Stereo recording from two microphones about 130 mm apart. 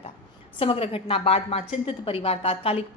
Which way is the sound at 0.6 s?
45° left (ahead or behind).